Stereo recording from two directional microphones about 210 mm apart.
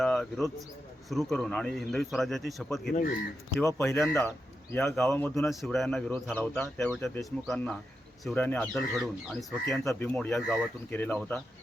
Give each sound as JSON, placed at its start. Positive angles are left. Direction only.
{"t": 0.0, "sound": "speech", "side_deg": 0}
{"t": 2.9, "sound": "speech", "side_deg": 40}
{"t": 3.6, "sound": "a man's voice", "side_deg": 10}